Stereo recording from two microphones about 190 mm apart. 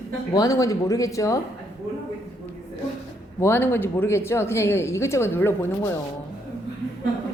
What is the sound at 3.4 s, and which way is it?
Speech, 10° left (ahead or behind).